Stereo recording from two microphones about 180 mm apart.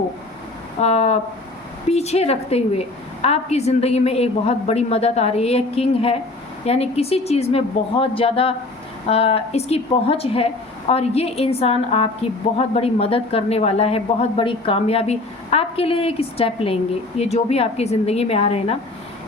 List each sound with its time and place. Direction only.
0.8 s a woman's voice: 35° left (ahead or behind)